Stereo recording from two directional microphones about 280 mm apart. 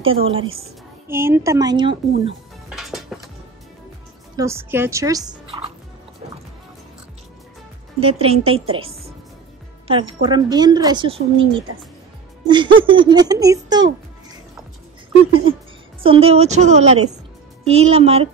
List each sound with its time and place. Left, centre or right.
0.0 s a woman's voice: centre
1.0 s a woman's voice: centre
2.7 s music: centre
4.4 s a woman's voice: centre
8.0 s a woman's voice: right
12.4 s a woman's voice: centre
16.0 s a woman's voice: centre